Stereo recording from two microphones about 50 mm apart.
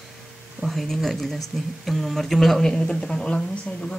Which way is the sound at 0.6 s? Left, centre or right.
Centre.